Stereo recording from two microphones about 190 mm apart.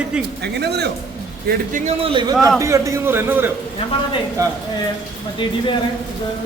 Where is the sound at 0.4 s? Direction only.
60° right (ahead or behind).